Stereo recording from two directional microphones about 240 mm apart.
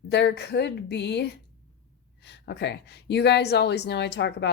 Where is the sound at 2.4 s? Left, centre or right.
Left.